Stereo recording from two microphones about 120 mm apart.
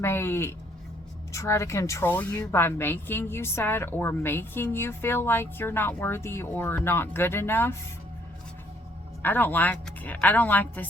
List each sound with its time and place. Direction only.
0.0 s a woman's voice: 20° left (ahead or behind)
9.2 s a woman's voice: 15° left (ahead or behind)